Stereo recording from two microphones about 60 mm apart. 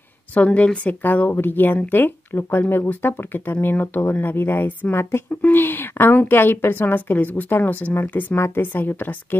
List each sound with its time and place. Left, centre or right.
0.5 s speech: centre
0.8 s a woman's voice: left